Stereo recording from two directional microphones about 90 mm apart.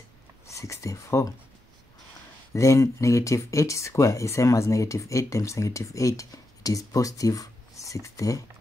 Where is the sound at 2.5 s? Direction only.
35° left (ahead or behind).